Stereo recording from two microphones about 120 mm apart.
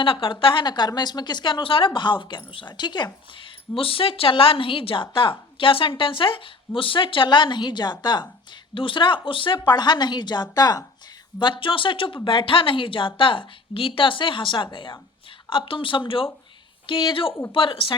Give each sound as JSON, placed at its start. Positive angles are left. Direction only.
{"t": 0.0, "sound": "speech", "side_deg": 45}
{"t": 3.8, "sound": "a woman's voice", "side_deg": 50}